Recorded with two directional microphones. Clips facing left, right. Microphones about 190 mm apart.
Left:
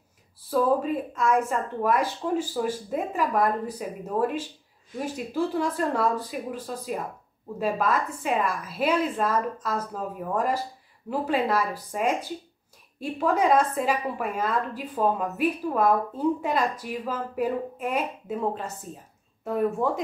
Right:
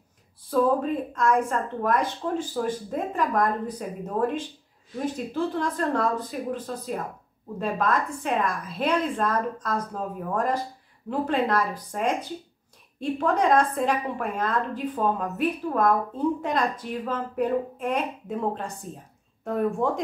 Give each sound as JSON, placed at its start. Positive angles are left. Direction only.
{"t": 0.5, "sound": "a woman's voice", "side_deg": 5}